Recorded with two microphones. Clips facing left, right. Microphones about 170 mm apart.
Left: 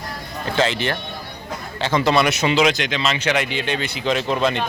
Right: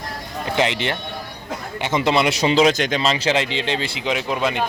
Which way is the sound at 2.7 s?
45° right (ahead or behind).